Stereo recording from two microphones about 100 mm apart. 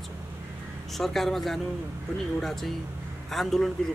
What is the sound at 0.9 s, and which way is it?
Speech, centre (ahead or behind).